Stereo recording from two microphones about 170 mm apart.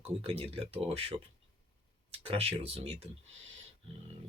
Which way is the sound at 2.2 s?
35° right (ahead or behind).